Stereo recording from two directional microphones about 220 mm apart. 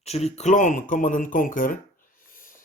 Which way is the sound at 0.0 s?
30° left (ahead or behind).